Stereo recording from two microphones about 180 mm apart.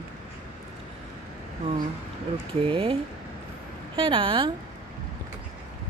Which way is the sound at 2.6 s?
30° right (ahead or behind).